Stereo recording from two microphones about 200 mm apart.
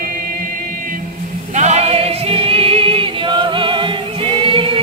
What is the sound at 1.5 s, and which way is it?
Music, 35° right (ahead or behind).